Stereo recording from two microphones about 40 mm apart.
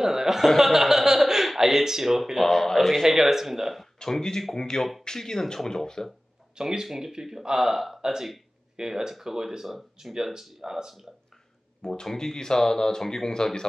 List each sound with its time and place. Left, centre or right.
0.0 s a man's voice: centre
4.0 s speech: centre
6.5 s speech: centre
11.8 s speech: centre